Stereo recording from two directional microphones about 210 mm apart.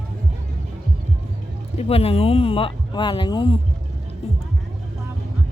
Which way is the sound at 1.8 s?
30° left (ahead or behind).